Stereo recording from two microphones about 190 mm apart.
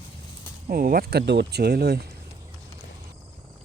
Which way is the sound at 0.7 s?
50° right (ahead or behind).